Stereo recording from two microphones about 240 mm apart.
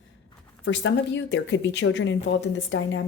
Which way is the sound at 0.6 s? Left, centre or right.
Left.